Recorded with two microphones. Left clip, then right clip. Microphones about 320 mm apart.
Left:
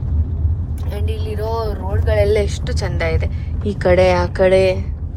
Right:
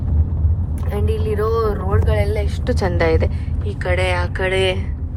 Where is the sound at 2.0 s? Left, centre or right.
Left.